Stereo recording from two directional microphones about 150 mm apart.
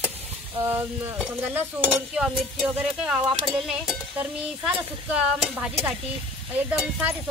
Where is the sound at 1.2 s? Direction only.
15° right (ahead or behind).